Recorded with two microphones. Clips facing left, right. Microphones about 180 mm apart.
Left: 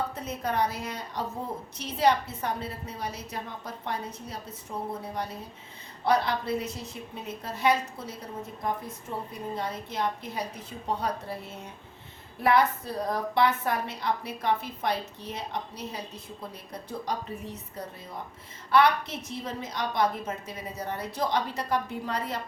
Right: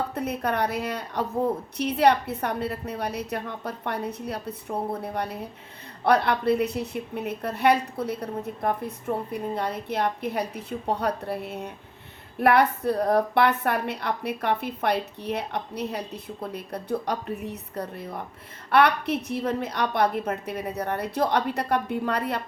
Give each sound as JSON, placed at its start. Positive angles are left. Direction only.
{"t": 0.1, "sound": "a woman's voice", "side_deg": -65}